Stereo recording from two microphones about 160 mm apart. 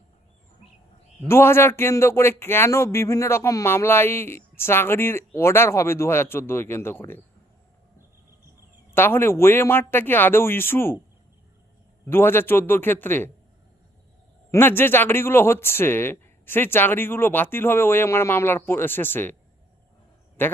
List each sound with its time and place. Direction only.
1.3 s speech: 15° left (ahead or behind)
9.0 s speech: 15° left (ahead or behind)
12.0 s speech: 15° left (ahead or behind)
14.5 s speech: 15° left (ahead or behind)
20.4 s speech: 15° left (ahead or behind)